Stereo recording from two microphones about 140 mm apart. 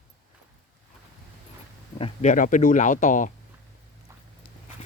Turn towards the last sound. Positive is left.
turn(degrees=65)  # may be behind; listen again after turning